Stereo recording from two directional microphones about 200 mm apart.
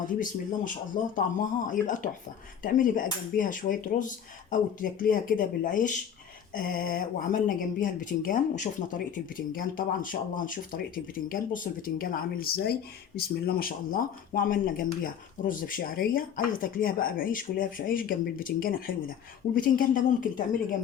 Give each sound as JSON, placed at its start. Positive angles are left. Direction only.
{"t": 1.1, "sound": "cutlery", "side_deg": 40}
{"t": 6.5, "sound": "speech", "side_deg": 45}